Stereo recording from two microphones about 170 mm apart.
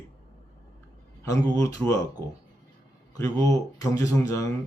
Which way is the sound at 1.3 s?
20° left (ahead or behind).